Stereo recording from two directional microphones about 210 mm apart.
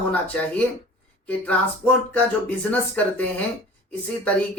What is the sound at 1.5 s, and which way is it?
Speech, 5° left (ahead or behind).